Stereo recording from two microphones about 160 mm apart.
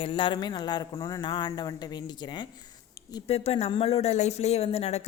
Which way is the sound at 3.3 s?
40° left (ahead or behind).